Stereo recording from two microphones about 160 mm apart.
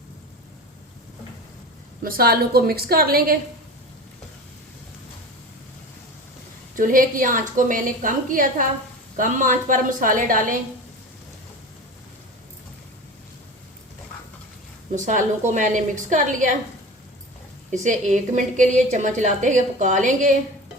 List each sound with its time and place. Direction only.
2.0 s a woman's voice: 70° right (ahead or behind)
6.7 s a woman's voice: 60° right (ahead or behind)
14.9 s a woman's voice: 50° right (ahead or behind)
17.8 s a woman's voice: 50° right (ahead or behind)